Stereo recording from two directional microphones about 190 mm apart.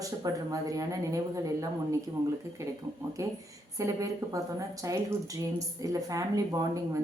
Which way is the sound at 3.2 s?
15° right (ahead or behind).